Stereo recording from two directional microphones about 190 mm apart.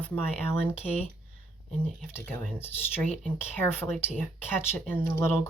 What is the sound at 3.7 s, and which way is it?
Speech, 10° left (ahead or behind).